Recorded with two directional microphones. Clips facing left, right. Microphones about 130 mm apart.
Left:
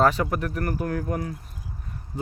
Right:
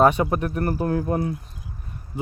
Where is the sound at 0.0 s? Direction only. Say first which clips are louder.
Right 3 dB; 20° right (ahead or behind).